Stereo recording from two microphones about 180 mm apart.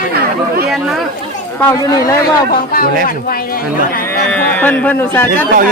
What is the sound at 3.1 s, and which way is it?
Speech, 55° left (ahead or behind).